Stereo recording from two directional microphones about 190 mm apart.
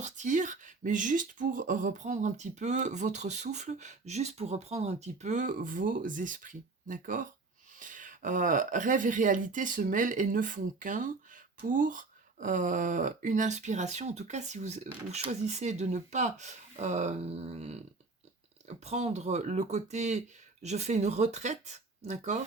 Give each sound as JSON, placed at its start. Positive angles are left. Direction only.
{"t": 0.0, "sound": "speech", "side_deg": -40}
{"t": 18.9, "sound": "speech", "side_deg": -35}